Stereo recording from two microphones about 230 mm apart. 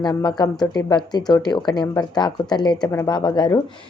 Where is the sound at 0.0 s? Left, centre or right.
Centre.